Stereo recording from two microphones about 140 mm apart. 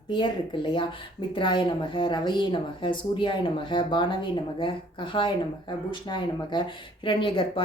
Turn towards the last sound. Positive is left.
turn(degrees=40)  # may be behind; listen again after turning